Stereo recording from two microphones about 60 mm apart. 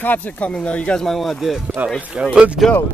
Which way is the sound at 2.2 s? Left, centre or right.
Centre.